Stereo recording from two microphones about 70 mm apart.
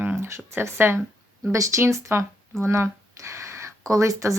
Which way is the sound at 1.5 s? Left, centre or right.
Right.